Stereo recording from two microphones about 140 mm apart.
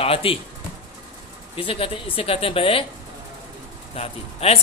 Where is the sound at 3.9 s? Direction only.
45° left (ahead or behind).